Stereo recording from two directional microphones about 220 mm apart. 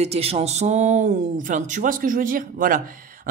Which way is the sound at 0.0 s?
25° right (ahead or behind).